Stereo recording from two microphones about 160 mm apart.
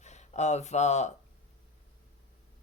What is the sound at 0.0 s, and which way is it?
Speech, 45° left (ahead or behind).